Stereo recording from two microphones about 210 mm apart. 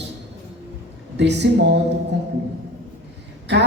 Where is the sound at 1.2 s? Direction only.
55° right (ahead or behind).